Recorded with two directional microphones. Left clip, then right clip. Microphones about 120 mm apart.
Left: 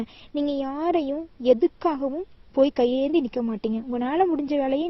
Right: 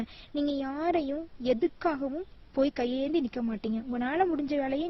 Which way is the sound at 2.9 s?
60° right (ahead or behind).